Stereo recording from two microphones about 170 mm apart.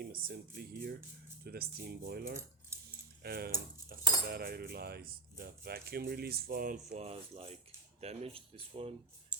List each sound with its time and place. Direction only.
0.0 s speech: 60° right (ahead or behind)
6.9 s speech: 35° right (ahead or behind)
9.3 s a sound: 5° right (ahead or behind)